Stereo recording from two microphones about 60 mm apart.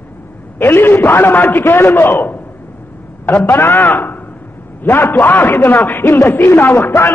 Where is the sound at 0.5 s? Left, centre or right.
Left.